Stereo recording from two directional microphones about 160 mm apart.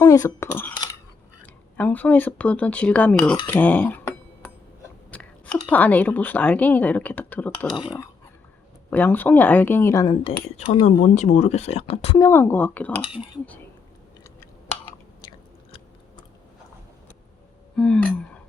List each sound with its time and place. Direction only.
0.0 s speech: 20° left (ahead or behind)
3.4 s cutlery: 10° left (ahead or behind)
5.1 s speech: 10° left (ahead or behind)
7.7 s speech: 30° left (ahead or behind)
8.9 s speech: 10° left (ahead or behind)
10.2 s speech: 40° left (ahead or behind)
12.2 s speech: 15° left (ahead or behind)
13.0 s speech: 30° left (ahead or behind)
17.7 s a sound: 5° left (ahead or behind)